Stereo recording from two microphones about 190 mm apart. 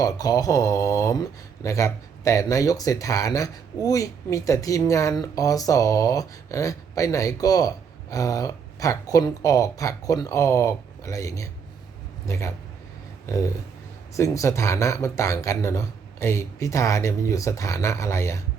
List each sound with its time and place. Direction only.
0.0 s speech: 20° left (ahead or behind)